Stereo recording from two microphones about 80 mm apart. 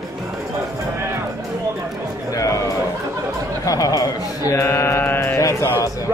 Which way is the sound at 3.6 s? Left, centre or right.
Left.